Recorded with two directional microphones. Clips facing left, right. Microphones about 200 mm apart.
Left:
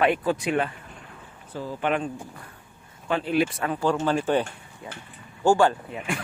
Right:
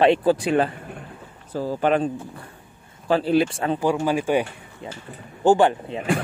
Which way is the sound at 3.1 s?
35° right (ahead or behind).